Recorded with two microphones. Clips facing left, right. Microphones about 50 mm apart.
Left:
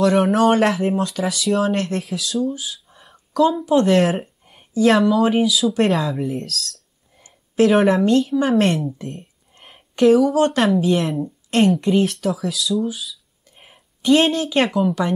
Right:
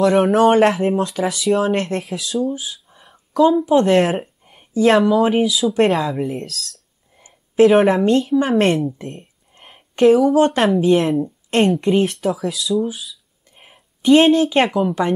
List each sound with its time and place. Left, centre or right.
0.0 s speech: centre
0.9 s speech: centre
2.6 s a sound: centre
3.3 s speech: centre
7.2 s a sound: right
7.6 s speech: centre
8.9 s speech: right
9.6 s a sound: right
10.0 s speech: centre